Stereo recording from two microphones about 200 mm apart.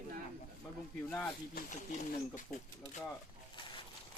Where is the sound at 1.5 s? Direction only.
40° left (ahead or behind).